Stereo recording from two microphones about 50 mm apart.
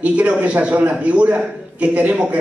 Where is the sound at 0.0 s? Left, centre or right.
Right.